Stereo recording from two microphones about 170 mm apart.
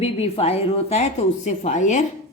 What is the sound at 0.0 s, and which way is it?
A woman's voice, 35° left (ahead or behind).